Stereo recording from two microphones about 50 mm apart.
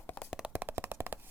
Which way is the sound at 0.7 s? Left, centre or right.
Right.